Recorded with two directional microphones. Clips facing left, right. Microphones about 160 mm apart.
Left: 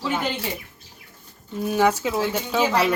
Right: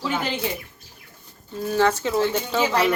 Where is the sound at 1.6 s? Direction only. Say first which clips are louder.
Even; 15° left (ahead or behind).